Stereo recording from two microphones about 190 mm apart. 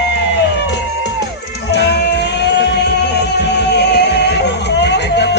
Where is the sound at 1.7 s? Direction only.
60° left (ahead or behind).